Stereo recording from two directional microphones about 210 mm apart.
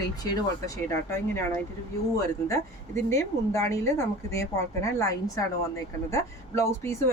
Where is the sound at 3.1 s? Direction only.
15° left (ahead or behind).